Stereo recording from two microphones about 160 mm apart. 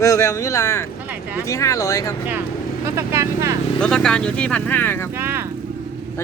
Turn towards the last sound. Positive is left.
turn(degrees=-15)  # may be behind; listen again after turning